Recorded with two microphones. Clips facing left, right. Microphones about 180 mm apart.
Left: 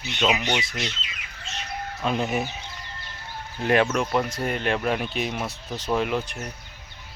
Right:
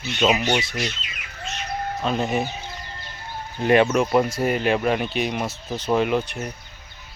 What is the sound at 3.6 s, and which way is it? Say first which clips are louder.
Speech: right 4 dB; 5° right (ahead or behind).